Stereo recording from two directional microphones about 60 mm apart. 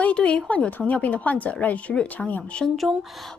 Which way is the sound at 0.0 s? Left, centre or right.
Left.